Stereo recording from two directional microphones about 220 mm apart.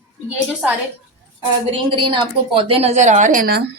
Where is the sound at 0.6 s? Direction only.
5° right (ahead or behind).